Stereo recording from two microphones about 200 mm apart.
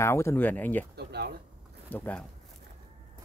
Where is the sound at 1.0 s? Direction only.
55° right (ahead or behind).